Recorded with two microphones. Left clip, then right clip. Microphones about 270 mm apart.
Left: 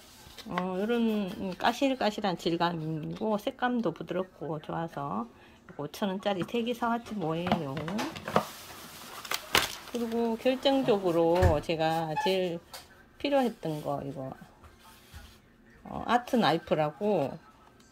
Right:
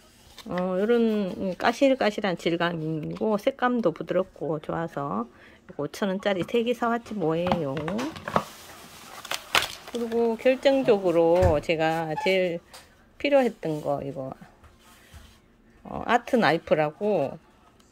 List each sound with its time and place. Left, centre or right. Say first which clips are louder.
0.5 s speech: right 7 dB; centre
10.0 s speech: right 6 dB; centre
15.9 s speech: right 4 dB; centre